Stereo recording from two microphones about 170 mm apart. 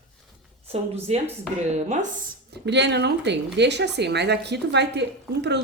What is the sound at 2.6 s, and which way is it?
A woman's voice, 90° right.